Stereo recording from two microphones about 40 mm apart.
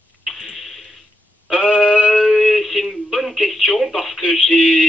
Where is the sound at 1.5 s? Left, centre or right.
Left.